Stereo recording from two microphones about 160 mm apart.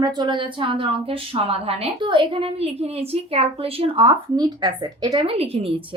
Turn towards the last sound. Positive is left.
turn(degrees=-35)  # may be behind; listen again after turning